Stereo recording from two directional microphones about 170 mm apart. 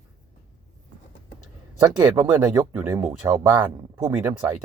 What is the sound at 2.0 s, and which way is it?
Speech, 20° right (ahead or behind).